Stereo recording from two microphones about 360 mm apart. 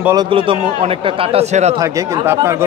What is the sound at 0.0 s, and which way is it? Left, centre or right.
A man's voice, centre.